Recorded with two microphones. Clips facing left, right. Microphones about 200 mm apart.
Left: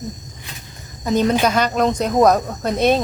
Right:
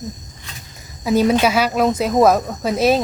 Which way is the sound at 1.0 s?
5° right (ahead or behind).